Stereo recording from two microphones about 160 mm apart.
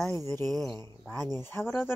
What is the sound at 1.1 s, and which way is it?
Speech, 15° left (ahead or behind).